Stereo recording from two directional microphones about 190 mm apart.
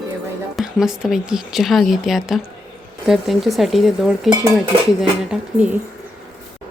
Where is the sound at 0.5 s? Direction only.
Centre (ahead or behind).